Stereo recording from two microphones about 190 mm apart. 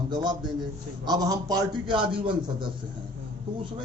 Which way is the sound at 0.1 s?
25° right (ahead or behind).